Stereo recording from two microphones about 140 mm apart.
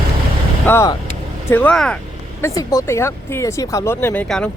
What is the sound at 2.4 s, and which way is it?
Speech, 25° left (ahead or behind).